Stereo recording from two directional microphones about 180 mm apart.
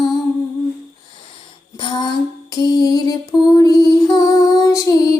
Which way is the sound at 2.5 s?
20° left (ahead or behind).